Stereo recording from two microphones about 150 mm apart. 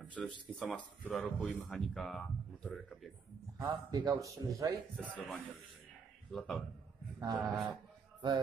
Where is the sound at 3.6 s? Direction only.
25° right (ahead or behind).